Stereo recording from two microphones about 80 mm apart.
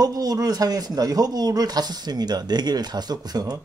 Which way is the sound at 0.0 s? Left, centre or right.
Right.